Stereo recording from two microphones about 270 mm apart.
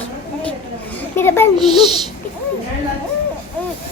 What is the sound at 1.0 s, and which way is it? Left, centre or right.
Children playing, centre.